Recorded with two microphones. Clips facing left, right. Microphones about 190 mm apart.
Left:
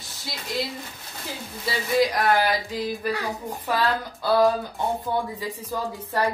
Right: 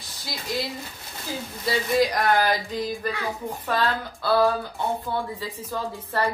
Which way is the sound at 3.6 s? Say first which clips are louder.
Left 1 dB; 15° left (ahead or behind).